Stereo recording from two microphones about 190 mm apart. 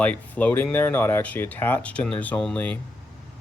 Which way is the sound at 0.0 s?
5° left (ahead or behind).